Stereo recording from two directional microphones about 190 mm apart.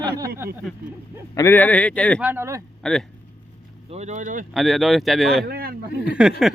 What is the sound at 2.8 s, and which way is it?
Speech, 5° left (ahead or behind).